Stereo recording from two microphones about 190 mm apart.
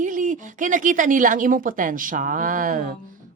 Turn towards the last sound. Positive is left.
turn(degrees=-45)  # may be behind; listen again after turning